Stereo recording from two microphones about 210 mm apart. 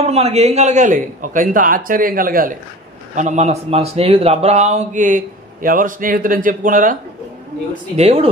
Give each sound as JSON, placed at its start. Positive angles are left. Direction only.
{"t": 0.0, "sound": "a man's voice", "side_deg": -30}